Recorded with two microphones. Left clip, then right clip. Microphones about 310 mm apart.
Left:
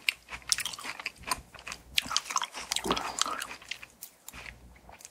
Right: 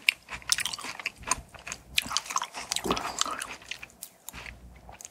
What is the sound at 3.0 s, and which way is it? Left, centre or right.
Chewing, right.